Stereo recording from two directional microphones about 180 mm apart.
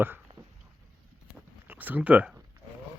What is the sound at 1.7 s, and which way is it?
Speech, 10° right (ahead or behind).